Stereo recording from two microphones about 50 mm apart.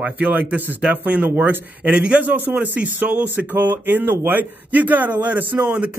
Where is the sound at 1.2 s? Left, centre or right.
Right.